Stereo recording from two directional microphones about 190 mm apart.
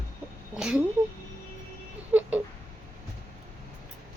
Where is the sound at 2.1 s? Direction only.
10° right (ahead or behind).